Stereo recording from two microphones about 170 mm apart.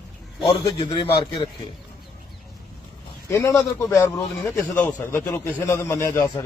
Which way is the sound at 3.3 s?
20° left (ahead or behind).